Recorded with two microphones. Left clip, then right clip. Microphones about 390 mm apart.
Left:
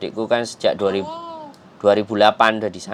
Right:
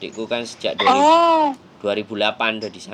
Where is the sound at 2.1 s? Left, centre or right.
Left.